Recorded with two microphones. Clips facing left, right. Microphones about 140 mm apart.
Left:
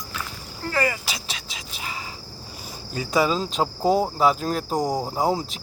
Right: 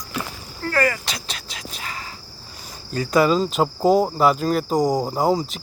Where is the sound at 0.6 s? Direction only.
10° left (ahead or behind).